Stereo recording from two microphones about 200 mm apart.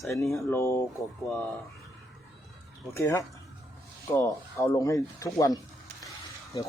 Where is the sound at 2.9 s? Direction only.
15° left (ahead or behind).